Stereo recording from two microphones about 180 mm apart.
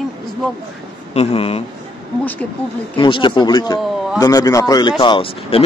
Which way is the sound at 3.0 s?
25° left (ahead or behind).